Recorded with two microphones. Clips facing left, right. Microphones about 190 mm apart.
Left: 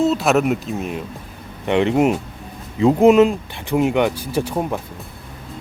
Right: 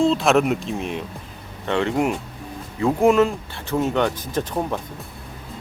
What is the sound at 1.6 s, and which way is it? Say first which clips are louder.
Speech: left 5 dB; 20° left (ahead or behind).